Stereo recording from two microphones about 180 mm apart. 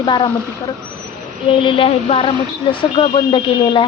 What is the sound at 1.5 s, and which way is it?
Speech, 30° left (ahead or behind).